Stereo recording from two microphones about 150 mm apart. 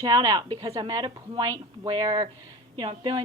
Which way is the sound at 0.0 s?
25° right (ahead or behind).